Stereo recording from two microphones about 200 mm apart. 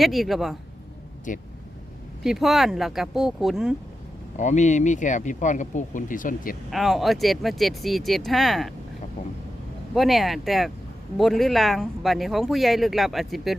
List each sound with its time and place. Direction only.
0.0 s speech: centre (ahead or behind)
1.3 s speech: 40° left (ahead or behind)
2.2 s speech: centre (ahead or behind)
4.4 s speech: 35° left (ahead or behind)
6.7 s speech: centre (ahead or behind)
9.9 s speech: centre (ahead or behind)